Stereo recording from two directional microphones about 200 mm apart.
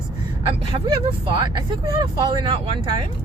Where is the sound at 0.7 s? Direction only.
25° right (ahead or behind).